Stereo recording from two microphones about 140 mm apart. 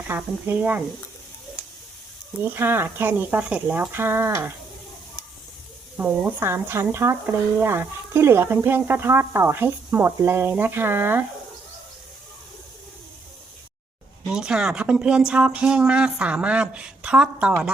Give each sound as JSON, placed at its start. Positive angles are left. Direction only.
{"t": 0.1, "sound": "speech", "side_deg": -15}
{"t": 2.4, "sound": "speech", "side_deg": -15}
{"t": 6.0, "sound": "speech", "side_deg": -15}
{"t": 14.3, "sound": "speech", "side_deg": -5}